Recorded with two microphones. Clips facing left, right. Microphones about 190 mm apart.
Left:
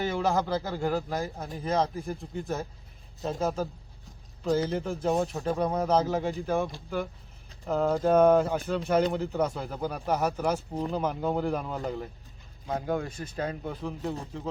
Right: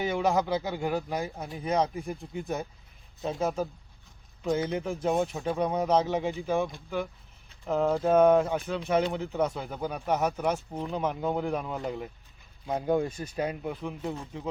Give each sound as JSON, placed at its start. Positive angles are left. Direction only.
{"t": 0.0, "sound": "a man's voice", "side_deg": 0}
{"t": 12.6, "sound": "speech", "side_deg": -20}
{"t": 13.8, "sound": "a man's voice", "side_deg": 0}